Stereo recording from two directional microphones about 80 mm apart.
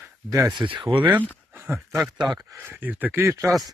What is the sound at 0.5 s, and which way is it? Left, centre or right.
Speech, right.